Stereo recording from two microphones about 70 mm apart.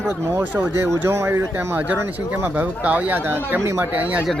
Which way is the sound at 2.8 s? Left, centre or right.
Right.